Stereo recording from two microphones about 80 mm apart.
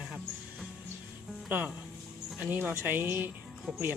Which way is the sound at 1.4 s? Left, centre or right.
Right.